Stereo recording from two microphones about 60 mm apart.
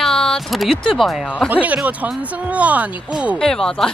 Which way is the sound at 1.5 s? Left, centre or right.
Right.